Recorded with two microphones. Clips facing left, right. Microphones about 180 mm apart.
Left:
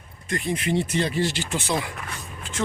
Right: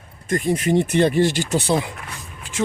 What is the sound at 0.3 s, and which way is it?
Speech, 45° right (ahead or behind).